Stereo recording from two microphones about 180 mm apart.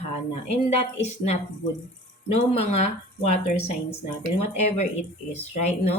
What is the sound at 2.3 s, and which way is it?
Speech, 35° left (ahead or behind).